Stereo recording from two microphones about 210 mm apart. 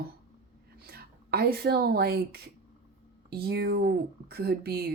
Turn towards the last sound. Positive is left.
turn(degrees=-50)  # may be behind; listen again after turning